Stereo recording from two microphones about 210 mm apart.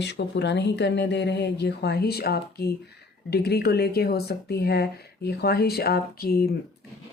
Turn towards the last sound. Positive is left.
turn(degrees=45)  # may be behind; listen again after turning